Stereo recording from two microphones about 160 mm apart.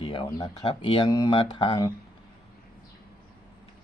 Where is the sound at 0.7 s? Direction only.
35° left (ahead or behind).